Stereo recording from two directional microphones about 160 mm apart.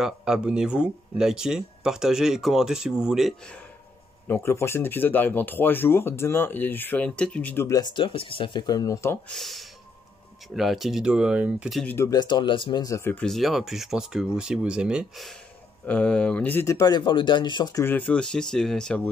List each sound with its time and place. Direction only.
0.0 s speech: 5° right (ahead or behind)
4.3 s speech: 15° left (ahead or behind)
9.3 s speech: centre (ahead or behind)
11.8 s speech: 10° left (ahead or behind)
12.1 s speech: 25° left (ahead or behind)
17.8 s speech: 10° left (ahead or behind)